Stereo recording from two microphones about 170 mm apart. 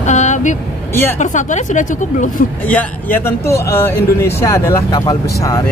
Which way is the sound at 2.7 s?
10° left (ahead or behind).